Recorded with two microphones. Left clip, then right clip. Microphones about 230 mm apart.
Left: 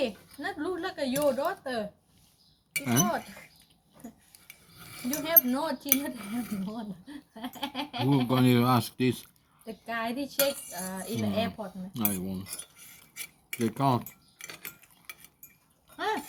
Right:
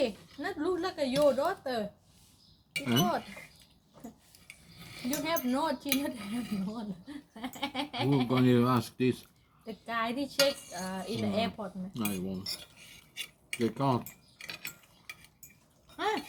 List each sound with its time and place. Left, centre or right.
0.0 s speech: centre
3.0 s speech: centre
5.0 s speech: centre
8.3 s speech: left
9.6 s speech: centre
11.9 s speech: left
13.2 s cutlery: left
16.0 s goat: centre